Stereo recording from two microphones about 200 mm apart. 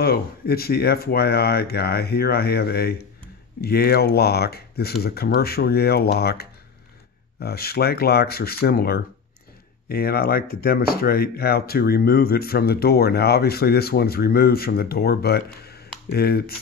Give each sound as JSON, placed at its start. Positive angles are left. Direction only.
{"t": 0.0, "sound": "speech", "side_deg": 50}